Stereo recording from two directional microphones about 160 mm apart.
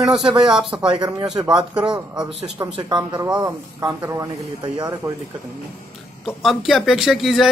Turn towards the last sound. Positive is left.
turn(degrees=0)  # may be behind; listen again after turning